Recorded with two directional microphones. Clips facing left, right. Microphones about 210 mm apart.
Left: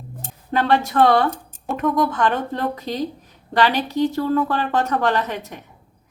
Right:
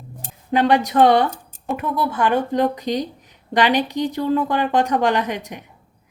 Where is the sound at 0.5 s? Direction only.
15° right (ahead or behind).